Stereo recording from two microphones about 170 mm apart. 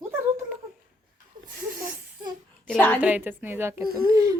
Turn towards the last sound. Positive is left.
turn(degrees=-20)  # may be behind; listen again after turning